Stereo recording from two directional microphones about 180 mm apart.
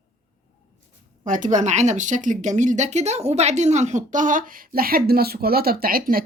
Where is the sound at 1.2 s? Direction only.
45° right (ahead or behind).